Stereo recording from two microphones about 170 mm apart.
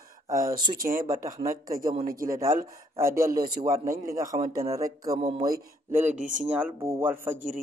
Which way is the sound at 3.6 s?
20° right (ahead or behind).